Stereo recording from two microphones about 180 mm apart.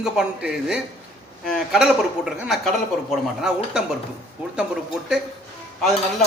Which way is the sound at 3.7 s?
5° right (ahead or behind).